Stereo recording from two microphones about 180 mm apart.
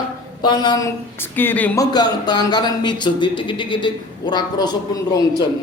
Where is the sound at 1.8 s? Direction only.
20° left (ahead or behind).